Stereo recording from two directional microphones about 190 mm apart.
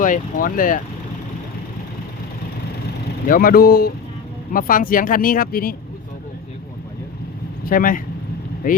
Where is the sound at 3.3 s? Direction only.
50° left (ahead or behind).